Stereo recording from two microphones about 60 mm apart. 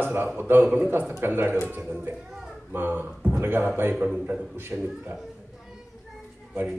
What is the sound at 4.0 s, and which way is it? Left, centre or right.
Speech, centre.